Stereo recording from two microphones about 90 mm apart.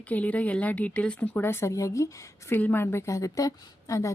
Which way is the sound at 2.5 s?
20° left (ahead or behind).